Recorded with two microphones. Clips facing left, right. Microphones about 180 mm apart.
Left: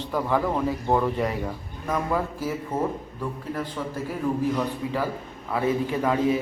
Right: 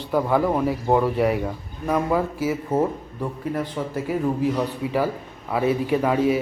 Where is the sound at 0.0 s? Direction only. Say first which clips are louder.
Right 4 dB; 15° right (ahead or behind).